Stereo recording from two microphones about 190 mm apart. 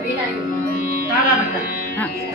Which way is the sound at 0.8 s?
50° right (ahead or behind).